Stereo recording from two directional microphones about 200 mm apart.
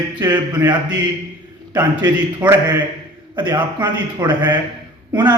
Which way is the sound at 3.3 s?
20° right (ahead or behind).